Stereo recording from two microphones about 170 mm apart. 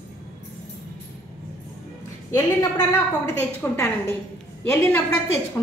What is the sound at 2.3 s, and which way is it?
A woman's voice, 20° left (ahead or behind).